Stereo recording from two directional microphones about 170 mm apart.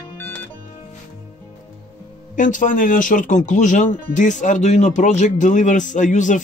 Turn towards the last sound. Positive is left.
turn(degrees=45)  # may be behind; listen again after turning